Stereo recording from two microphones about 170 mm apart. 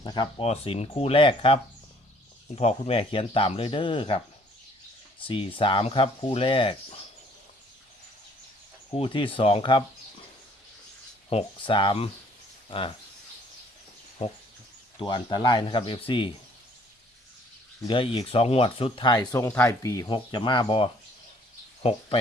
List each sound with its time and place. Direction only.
0.0 s speech: 25° left (ahead or behind)
2.6 s speech: 35° left (ahead or behind)
5.2 s speech: 30° left (ahead or behind)
9.0 s speech: 30° left (ahead or behind)
11.3 s speech: 35° left (ahead or behind)
14.9 s speech: 30° left (ahead or behind)
17.8 s speech: 30° left (ahead or behind)